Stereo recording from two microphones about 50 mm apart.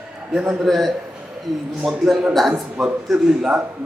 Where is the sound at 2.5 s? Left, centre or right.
Right.